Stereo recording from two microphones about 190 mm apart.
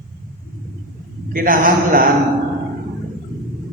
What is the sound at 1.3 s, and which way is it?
Speech, 45° right (ahead or behind).